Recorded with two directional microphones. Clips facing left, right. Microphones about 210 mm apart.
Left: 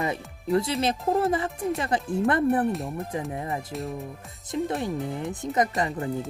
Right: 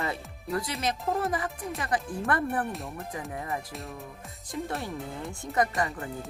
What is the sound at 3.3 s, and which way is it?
Speech, 25° left (ahead or behind).